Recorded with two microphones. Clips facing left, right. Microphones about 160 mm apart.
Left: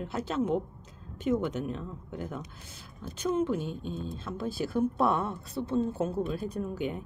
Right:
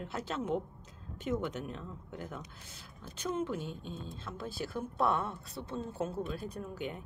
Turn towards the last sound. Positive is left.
turn(degrees=10)  # may be behind; listen again after turning